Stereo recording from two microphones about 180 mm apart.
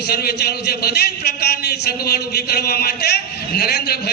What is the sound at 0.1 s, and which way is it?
A man's voice, 60° left (ahead or behind).